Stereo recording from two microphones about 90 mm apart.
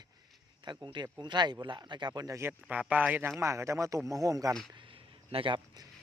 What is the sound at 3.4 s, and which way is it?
Speech, 35° right (ahead or behind).